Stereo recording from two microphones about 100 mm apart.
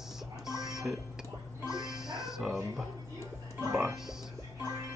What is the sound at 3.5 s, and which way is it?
Music, 25° right (ahead or behind).